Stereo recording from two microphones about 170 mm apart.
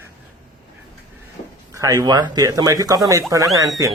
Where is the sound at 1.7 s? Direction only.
20° right (ahead or behind).